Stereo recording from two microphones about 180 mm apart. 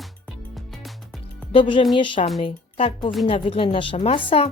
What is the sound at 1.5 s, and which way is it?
Speech, 25° left (ahead or behind).